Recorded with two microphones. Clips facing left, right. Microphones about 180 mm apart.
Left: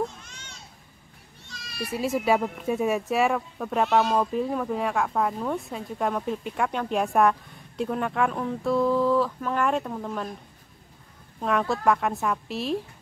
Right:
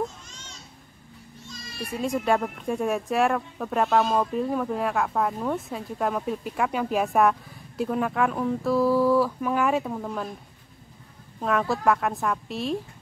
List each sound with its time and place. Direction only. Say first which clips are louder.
0.2 s children playing: right 1 dB; 60° left (ahead or behind)
1.9 s speech: left 1 dB; 5° left (ahead or behind)
11.4 s speech: even; centre (ahead or behind)